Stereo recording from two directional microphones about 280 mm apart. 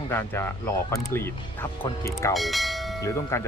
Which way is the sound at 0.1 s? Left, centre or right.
Centre.